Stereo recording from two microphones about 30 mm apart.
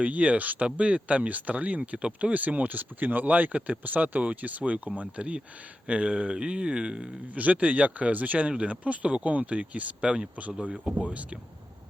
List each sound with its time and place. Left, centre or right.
0.0 s speech: right
0.8 s speech: right
2.0 s speech: right
2.3 s speech: right
7.3 s speech: right
11.1 s speech: right